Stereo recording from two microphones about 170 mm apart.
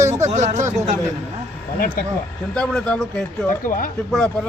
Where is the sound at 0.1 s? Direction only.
40° right (ahead or behind).